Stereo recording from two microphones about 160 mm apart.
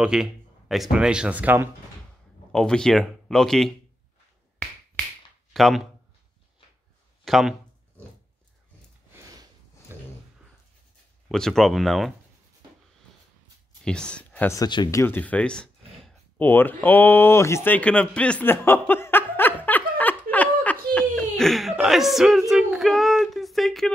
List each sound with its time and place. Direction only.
0.0 s speech: 5° right (ahead or behind)
2.5 s speech: 5° left (ahead or behind)
5.0 s a sound: 5° left (ahead or behind)
5.5 s speech: centre (ahead or behind)
7.2 s speech: centre (ahead or behind)
9.9 s a sound: 15° right (ahead or behind)
11.2 s speech: 5° left (ahead or behind)
13.8 s speech: 5° left (ahead or behind)
14.5 s a sound: 25° left (ahead or behind); by 21.1 s 10° left (ahead or behind)
21.1 s whimper: centre (ahead or behind)